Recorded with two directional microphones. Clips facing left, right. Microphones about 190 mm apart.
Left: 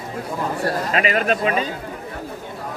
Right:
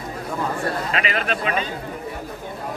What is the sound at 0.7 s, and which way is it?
Speech, 40° left (ahead or behind).